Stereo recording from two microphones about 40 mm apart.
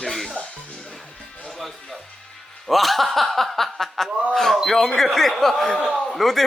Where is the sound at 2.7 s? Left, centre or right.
Centre.